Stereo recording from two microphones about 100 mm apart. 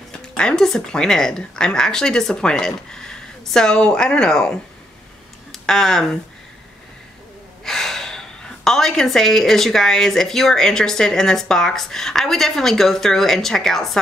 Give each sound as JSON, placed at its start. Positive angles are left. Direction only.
{"t": 0.1, "sound": "speech", "side_deg": 10}
{"t": 7.6, "sound": "speech", "side_deg": 5}